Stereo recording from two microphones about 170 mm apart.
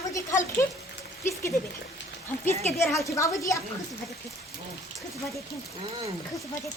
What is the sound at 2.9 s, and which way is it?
Speech, 15° left (ahead or behind).